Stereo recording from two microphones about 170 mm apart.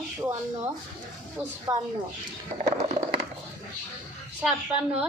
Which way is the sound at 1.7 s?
15° right (ahead or behind).